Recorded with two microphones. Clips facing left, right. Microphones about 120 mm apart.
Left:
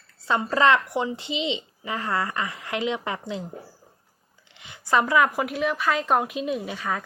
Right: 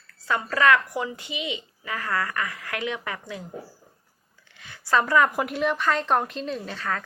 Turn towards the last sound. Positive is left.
turn(degrees=15)  # may be behind; listen again after turning